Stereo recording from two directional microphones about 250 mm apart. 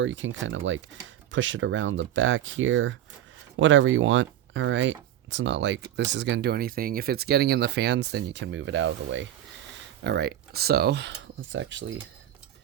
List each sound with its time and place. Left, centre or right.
0.0 s speech: right